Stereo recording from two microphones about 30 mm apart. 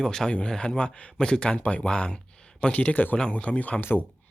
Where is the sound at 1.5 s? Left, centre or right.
Left.